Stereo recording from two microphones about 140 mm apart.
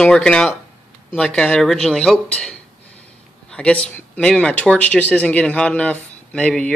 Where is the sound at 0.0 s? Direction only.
5° left (ahead or behind).